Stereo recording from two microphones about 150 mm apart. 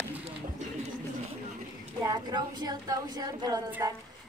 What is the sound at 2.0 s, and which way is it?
A woman's voice, 25° right (ahead or behind).